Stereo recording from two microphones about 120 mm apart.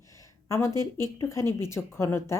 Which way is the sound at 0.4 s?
25° left (ahead or behind).